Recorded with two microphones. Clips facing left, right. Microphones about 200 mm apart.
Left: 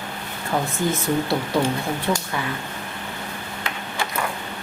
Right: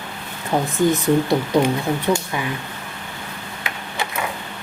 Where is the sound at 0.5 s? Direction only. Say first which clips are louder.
Right 3 dB; 20° right (ahead or behind).